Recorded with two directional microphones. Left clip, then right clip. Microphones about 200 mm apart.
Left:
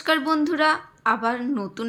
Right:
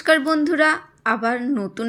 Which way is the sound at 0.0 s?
15° right (ahead or behind).